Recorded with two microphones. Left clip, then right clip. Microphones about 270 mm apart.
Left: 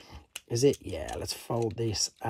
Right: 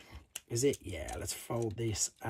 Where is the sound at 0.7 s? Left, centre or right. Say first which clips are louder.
Left 7 dB; centre.